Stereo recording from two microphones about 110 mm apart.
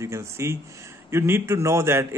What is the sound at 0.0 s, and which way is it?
A man's voice, 25° right (ahead or behind).